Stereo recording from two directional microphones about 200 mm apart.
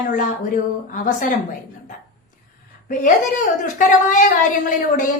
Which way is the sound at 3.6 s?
40° left (ahead or behind).